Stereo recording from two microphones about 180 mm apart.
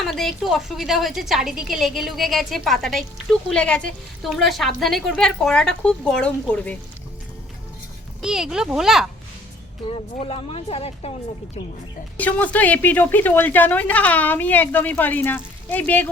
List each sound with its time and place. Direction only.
0.0 s a woman's voice: centre (ahead or behind)
8.2 s a woman's voice: 5° right (ahead or behind)
9.8 s speech: 30° left (ahead or behind)
12.1 s a woman's voice: 10° left (ahead or behind)